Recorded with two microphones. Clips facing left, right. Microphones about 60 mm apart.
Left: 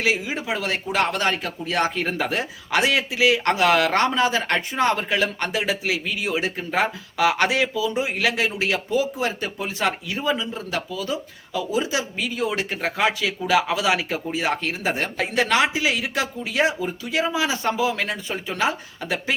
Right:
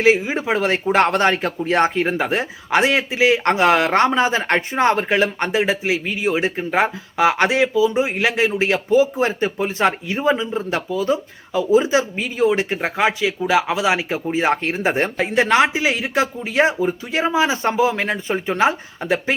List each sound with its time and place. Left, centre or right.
0.0 s speech: right
15.2 s speech: right